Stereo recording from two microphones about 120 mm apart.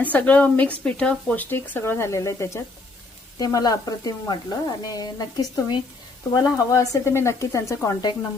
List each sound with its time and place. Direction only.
0.0 s speech: 15° left (ahead or behind)